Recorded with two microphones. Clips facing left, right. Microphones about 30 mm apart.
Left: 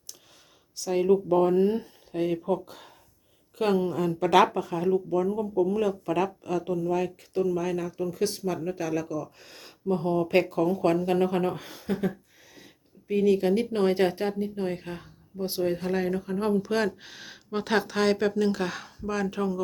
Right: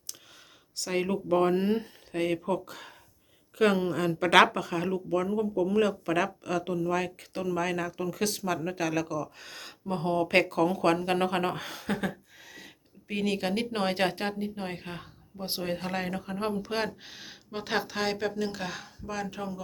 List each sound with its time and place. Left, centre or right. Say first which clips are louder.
0.8 s speech: left 3 dB; right
1.0 s speech: left 5 dB; right
6.7 s speech: left 2 dB; right
9.8 s speech: left 3 dB; right
14.4 s speech: left 5 dB; right
17.0 s speech: left 1 dB; centre